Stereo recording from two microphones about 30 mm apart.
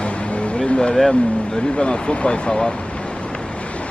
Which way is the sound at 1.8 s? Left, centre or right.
Left.